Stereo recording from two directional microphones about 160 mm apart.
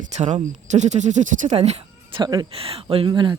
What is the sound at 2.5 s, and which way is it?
Speech, 35° right (ahead or behind).